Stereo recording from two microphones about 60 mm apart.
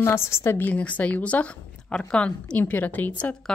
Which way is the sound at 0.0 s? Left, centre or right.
Left.